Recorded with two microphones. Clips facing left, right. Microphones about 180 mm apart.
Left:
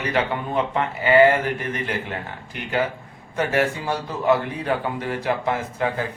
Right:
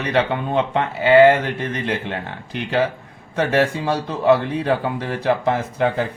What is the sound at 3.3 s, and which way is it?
Speech, 70° right (ahead or behind).